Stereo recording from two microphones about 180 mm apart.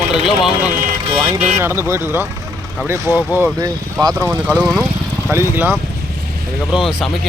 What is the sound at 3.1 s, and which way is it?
Speech, 10° right (ahead or behind).